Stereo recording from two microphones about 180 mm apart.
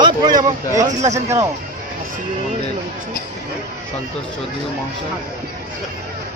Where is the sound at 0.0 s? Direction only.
20° right (ahead or behind).